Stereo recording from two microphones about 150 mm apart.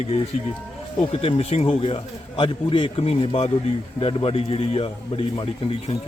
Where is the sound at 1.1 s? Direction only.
40° left (ahead or behind).